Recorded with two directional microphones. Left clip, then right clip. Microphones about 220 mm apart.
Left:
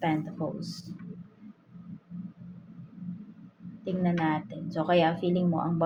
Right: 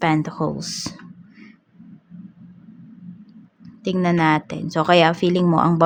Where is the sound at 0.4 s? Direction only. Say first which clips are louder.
Right 10 dB; 50° right (ahead or behind).